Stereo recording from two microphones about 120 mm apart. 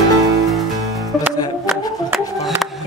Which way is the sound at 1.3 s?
35° left (ahead or behind).